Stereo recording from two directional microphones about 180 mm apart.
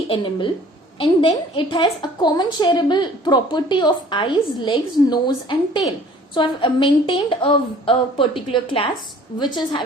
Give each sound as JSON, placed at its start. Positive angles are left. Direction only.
{"t": 0.1, "sound": "a woman's voice", "side_deg": 25}